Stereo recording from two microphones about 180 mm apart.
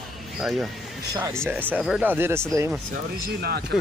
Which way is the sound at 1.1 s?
15° right (ahead or behind).